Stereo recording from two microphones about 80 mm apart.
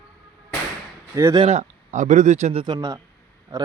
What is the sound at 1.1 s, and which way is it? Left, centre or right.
Speech, right.